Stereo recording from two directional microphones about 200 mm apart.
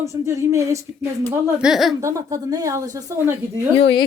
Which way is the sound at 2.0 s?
15° right (ahead or behind).